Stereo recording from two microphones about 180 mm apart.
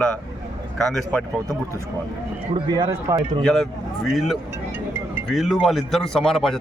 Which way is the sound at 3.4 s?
5° left (ahead or behind).